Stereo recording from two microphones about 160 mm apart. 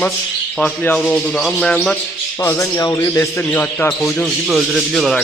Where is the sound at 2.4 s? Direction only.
20° left (ahead or behind).